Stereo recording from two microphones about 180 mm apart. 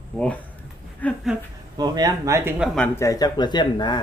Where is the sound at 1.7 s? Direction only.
20° right (ahead or behind).